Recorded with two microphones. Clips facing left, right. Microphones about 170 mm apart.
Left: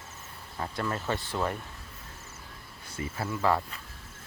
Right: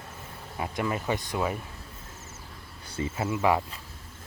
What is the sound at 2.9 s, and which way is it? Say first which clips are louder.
Speech: right 4 dB; 25° right (ahead or behind).